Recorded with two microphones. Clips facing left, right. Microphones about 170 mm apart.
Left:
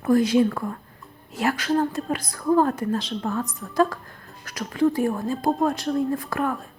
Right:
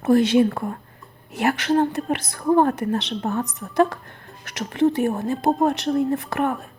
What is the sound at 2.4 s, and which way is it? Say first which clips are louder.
A woman's voice: right 2 dB; 25° right (ahead or behind).